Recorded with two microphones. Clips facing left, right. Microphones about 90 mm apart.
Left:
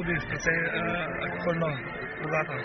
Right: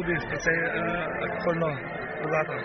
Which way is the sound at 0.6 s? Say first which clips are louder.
Right 2 dB; centre (ahead or behind).